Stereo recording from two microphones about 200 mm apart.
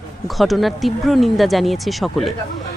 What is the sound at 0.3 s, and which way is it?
Speech, centre (ahead or behind).